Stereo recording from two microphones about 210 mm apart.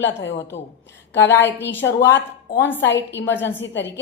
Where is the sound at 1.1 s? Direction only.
10° left (ahead or behind).